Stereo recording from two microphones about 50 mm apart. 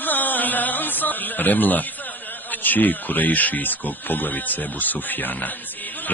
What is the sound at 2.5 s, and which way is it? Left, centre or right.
Speech, left.